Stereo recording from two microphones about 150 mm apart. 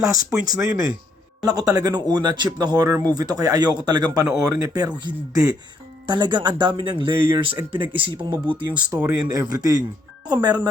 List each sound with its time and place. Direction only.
0.0 s speech: 25° right (ahead or behind)